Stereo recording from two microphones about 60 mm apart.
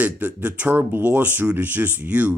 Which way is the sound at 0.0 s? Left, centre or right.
Right.